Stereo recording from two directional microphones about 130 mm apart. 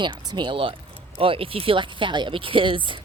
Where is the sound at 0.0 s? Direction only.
35° right (ahead or behind).